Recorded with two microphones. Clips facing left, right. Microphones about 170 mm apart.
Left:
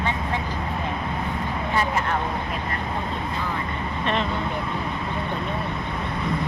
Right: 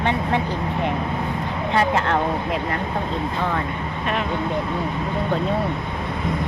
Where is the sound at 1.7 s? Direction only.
75° right (ahead or behind).